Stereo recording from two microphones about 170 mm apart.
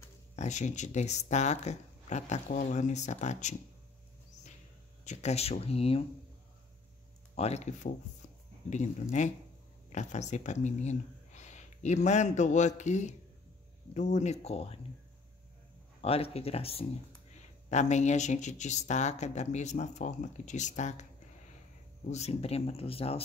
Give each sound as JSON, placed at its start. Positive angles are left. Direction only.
{"t": 0.4, "sound": "speech", "side_deg": 45}
{"t": 5.0, "sound": "speech", "side_deg": 45}
{"t": 7.3, "sound": "speech", "side_deg": 40}
{"t": 16.0, "sound": "speech", "side_deg": 35}
{"t": 22.1, "sound": "speech", "side_deg": 40}